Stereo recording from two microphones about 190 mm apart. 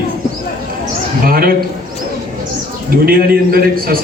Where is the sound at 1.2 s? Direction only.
50° right (ahead or behind).